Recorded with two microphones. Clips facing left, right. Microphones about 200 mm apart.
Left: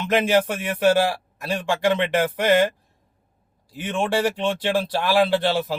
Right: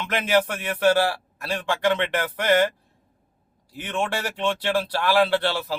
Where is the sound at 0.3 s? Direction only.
15° left (ahead or behind).